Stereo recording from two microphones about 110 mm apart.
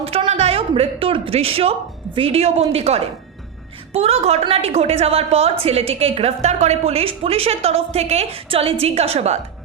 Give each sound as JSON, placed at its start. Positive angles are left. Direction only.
{"t": 0.3, "sound": "a man's voice", "side_deg": -75}